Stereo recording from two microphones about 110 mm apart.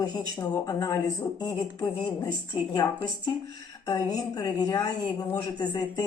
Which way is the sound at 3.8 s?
40° left (ahead or behind).